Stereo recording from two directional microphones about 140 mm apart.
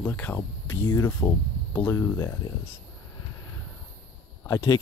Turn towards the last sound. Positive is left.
turn(degrees=20)  # may be behind; listen again after turning